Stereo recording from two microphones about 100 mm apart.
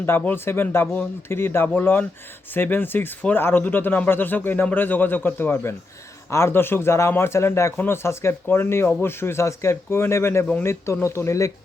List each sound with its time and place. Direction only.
0.0 s a man's voice: 20° left (ahead or behind)